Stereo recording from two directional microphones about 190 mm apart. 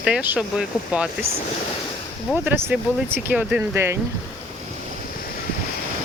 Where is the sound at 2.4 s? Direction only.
10° right (ahead or behind).